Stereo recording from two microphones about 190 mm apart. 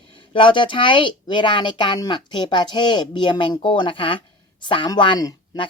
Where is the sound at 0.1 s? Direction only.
25° left (ahead or behind).